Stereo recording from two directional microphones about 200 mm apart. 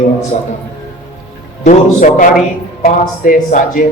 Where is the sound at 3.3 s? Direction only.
40° left (ahead or behind).